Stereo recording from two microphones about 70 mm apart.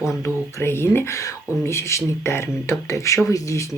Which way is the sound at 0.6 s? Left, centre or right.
Left.